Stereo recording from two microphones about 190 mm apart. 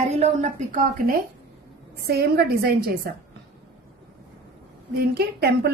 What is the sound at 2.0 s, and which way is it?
A woman's voice, 55° right (ahead or behind).